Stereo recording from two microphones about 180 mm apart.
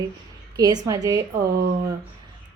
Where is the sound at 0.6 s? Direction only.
20° right (ahead or behind).